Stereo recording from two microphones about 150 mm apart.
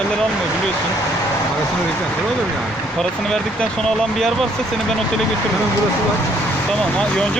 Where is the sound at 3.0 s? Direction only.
5° left (ahead or behind).